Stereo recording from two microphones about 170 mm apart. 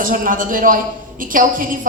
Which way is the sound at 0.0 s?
55° right (ahead or behind).